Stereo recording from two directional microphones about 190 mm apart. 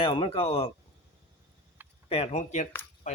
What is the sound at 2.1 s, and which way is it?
Speech, 35° left (ahead or behind).